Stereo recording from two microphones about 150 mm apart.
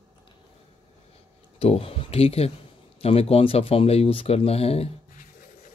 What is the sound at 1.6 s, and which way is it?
Speech, 40° left (ahead or behind).